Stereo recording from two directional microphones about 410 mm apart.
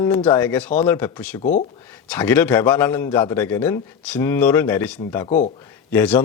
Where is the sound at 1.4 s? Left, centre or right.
Centre.